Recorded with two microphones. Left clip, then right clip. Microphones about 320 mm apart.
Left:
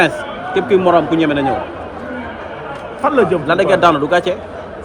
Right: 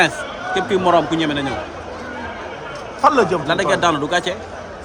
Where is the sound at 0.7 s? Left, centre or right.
Centre.